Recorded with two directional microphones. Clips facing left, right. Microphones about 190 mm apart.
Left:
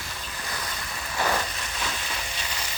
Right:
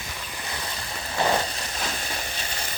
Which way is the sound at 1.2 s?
25° right (ahead or behind).